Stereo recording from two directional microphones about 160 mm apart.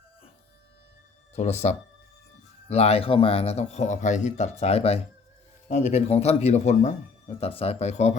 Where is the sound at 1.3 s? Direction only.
45° left (ahead or behind).